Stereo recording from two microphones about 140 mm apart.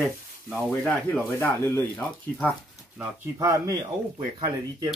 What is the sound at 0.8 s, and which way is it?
Speech, 10° left (ahead or behind).